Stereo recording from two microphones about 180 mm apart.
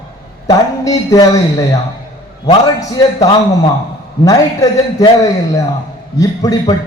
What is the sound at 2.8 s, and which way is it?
A man's voice, 20° left (ahead or behind).